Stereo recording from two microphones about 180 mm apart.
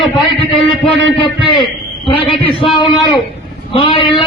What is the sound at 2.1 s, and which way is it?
A man's voice, 30° left (ahead or behind).